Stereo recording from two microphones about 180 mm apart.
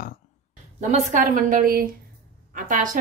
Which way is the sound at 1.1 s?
45° right (ahead or behind).